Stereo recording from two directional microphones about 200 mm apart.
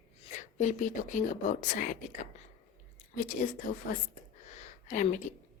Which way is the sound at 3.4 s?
40° left (ahead or behind).